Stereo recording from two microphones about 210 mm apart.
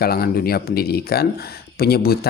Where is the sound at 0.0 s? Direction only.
45° left (ahead or behind).